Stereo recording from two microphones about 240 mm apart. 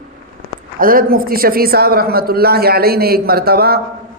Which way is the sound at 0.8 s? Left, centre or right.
Right.